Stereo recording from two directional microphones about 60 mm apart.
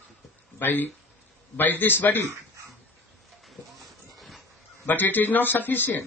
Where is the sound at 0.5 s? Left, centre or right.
Left.